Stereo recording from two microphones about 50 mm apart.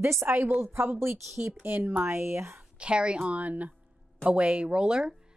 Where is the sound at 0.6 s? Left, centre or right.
Right.